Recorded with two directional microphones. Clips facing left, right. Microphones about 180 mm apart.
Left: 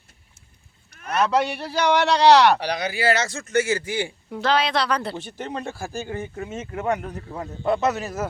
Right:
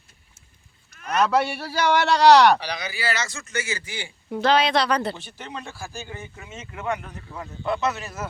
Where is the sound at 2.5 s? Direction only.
55° left (ahead or behind).